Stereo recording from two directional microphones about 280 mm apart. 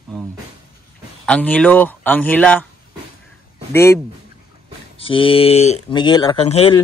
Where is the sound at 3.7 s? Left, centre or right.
Centre.